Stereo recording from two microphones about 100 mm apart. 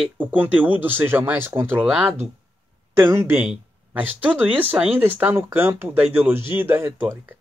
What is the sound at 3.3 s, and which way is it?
Speech, 15° right (ahead or behind).